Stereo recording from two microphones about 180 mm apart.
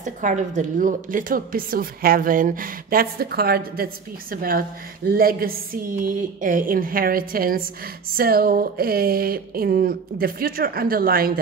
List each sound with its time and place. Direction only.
0.0 s speech: 45° right (ahead or behind)